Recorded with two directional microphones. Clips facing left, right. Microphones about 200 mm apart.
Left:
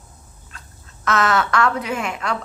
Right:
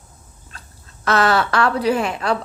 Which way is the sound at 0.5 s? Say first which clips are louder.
Right 1 dB; 35° right (ahead or behind).